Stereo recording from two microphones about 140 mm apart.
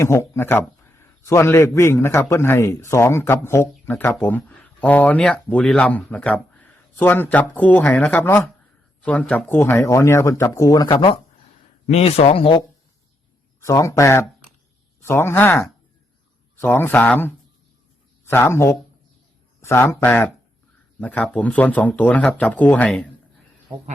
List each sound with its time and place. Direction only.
0.0 s a man's voice: 20° left (ahead or behind)
10.9 s speech: 40° left (ahead or behind)
11.9 s speech: 50° left (ahead or behind)
13.6 s a man's voice: 20° left (ahead or behind)